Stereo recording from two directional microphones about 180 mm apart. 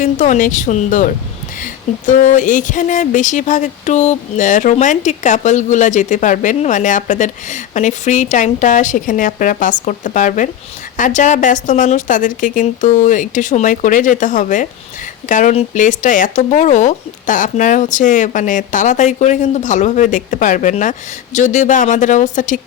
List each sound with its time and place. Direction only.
0.0 s speech: 45° left (ahead or behind)